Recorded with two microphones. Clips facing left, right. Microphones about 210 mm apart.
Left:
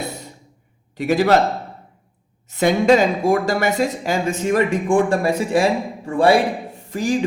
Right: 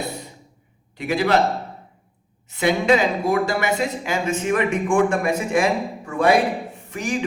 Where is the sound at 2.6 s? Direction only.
45° left (ahead or behind).